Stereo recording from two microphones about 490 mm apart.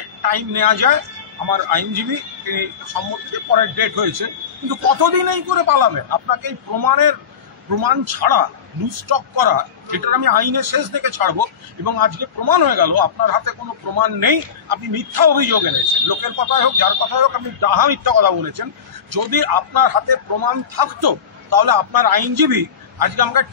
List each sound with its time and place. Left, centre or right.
0.2 s a man's voice: right
3.5 s a man's voice: right